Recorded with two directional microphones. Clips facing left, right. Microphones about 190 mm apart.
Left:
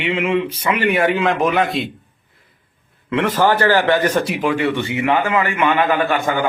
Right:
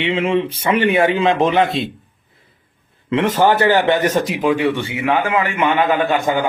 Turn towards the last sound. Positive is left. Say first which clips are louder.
# right 1 dB
turn(degrees=-20)  # may be behind; listen again after turning